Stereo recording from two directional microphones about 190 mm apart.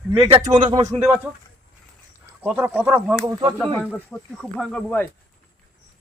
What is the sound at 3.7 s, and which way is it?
Speech, 5° left (ahead or behind).